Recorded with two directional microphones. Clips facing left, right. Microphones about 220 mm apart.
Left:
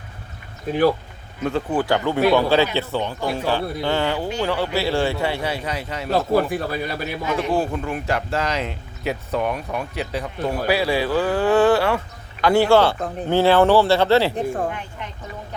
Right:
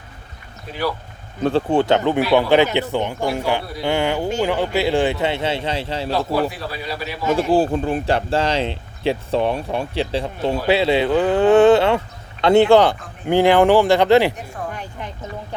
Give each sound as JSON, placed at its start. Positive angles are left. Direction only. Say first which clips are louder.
{"t": 0.7, "sound": "a man's voice", "louder": "left 10 dB", "side_deg": 50}
{"t": 1.5, "sound": "speech", "louder": "right 4 dB", "side_deg": -30}
{"t": 6.1, "sound": "a man's voice", "louder": "left 3 dB", "side_deg": 50}
{"t": 7.5, "sound": "speech", "louder": "right 5 dB", "side_deg": -30}